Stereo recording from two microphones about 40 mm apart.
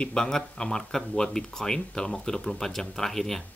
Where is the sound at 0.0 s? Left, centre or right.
Left.